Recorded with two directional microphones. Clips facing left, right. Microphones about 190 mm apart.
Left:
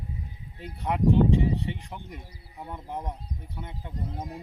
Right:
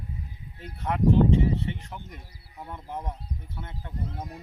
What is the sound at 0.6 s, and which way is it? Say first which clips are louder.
Speech: even; 15° left (ahead or behind).